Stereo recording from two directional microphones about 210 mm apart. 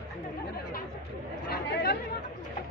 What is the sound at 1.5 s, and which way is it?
Chatter, 50° left (ahead or behind).